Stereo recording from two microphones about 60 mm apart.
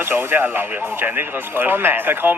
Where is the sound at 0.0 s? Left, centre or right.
Right.